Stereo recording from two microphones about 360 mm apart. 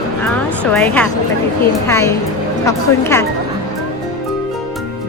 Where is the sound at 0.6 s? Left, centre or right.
Centre.